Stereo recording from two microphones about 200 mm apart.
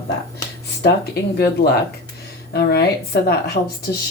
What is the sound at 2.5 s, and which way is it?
A woman's voice, 55° left (ahead or behind).